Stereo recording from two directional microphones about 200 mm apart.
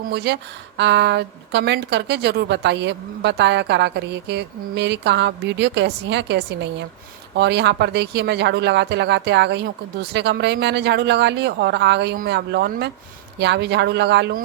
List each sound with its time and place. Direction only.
0.1 s a woman's voice: 55° right (ahead or behind)